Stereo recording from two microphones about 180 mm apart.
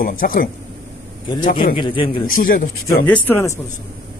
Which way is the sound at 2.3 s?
50° left (ahead or behind).